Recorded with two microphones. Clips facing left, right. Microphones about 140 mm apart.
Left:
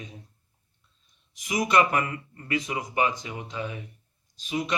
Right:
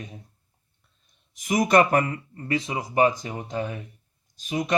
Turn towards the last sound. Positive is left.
turn(degrees=-45)  # may be behind; listen again after turning